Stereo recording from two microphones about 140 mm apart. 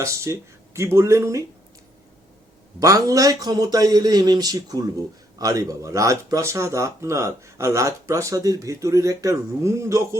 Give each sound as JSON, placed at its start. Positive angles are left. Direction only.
{"t": 0.0, "sound": "speech", "side_deg": -20}
{"t": 2.8, "sound": "speech", "side_deg": -25}